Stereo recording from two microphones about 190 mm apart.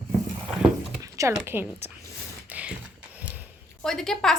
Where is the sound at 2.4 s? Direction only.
5° right (ahead or behind).